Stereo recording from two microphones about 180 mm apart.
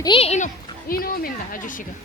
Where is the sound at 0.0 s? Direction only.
30° left (ahead or behind); by 1.7 s 55° left (ahead or behind).